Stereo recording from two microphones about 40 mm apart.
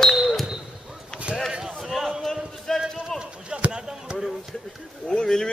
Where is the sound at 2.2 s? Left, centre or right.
Centre.